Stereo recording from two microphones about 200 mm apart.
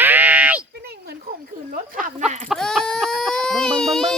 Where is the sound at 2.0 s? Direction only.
40° right (ahead or behind).